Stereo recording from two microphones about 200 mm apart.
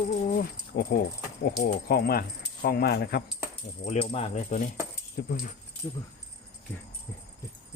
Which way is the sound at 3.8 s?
30° left (ahead or behind).